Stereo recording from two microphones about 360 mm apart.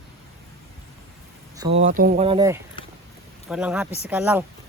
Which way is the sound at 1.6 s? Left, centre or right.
Centre.